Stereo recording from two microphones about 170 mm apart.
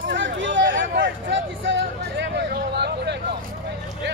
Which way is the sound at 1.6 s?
90° right.